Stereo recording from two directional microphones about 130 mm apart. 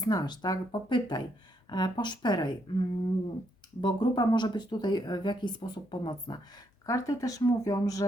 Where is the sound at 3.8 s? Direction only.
35° left (ahead or behind).